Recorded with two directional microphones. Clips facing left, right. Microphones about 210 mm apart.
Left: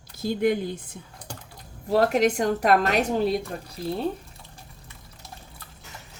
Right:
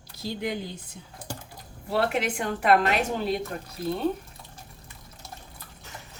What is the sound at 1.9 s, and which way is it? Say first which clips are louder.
A woman's voice: left 6 dB; 40° left (ahead or behind).